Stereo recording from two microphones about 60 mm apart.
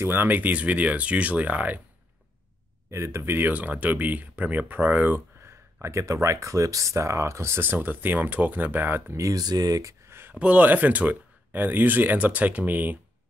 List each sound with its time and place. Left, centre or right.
0.0 s speech: right
2.9 s speech: right
3.3 s speech: right
5.4 s speech: right
7.7 s speech: right
9.1 s speech: right
10.0 s a sound: right
10.3 s speech: right